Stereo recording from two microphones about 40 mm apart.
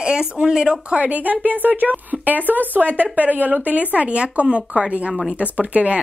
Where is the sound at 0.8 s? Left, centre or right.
Right.